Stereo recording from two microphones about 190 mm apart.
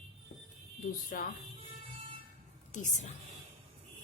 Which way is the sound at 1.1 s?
50° left (ahead or behind).